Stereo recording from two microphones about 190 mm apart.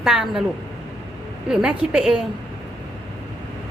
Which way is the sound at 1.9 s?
5° right (ahead or behind).